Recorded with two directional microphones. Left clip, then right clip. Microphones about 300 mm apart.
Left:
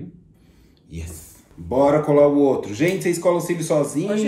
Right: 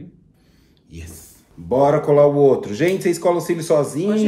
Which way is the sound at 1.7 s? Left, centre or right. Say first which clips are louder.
Right 2 dB; right.